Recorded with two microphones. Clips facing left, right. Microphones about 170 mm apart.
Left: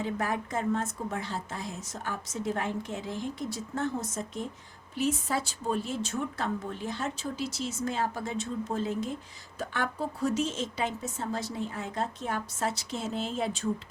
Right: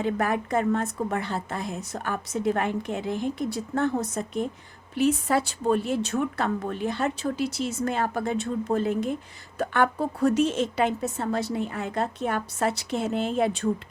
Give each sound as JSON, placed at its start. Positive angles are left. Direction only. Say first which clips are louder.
{"t": 0.0, "sound": "a woman's voice", "louder": "right 6 dB", "side_deg": -60}